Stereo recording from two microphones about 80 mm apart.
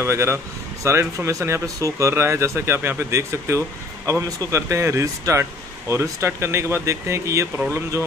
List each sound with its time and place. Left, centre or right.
0.0 s speech: right